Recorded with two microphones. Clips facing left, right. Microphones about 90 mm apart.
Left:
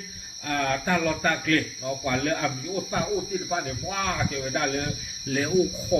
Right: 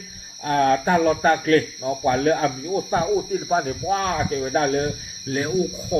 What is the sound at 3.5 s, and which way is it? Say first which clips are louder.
Speech: right 11 dB; 35° right (ahead or behind).